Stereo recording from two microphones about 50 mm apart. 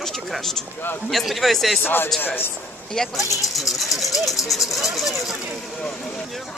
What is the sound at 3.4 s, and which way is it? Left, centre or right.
Speech, centre.